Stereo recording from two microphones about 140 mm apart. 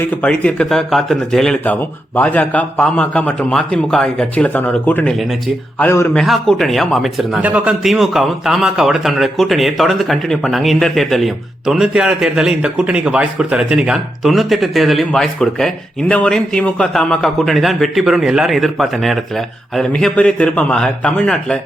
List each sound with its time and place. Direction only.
0.0 s speech: 10° left (ahead or behind)
6.1 s a man's voice: centre (ahead or behind)